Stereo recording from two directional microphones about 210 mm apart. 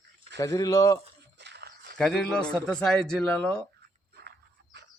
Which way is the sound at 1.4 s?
55° right (ahead or behind).